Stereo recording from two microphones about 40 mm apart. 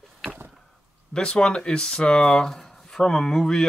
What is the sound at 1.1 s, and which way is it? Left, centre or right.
Speech, left.